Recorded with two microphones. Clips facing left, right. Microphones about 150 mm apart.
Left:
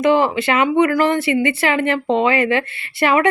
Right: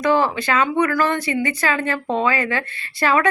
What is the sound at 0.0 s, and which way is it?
Speech, 20° left (ahead or behind).